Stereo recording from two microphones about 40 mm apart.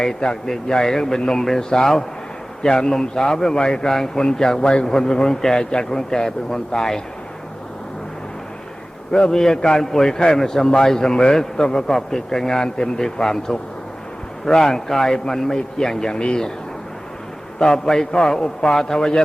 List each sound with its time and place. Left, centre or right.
0.4 s a man's voice: centre
9.3 s a man's voice: centre
17.6 s a man's voice: centre